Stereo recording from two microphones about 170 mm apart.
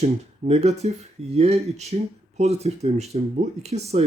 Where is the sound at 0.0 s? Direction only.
40° right (ahead or behind).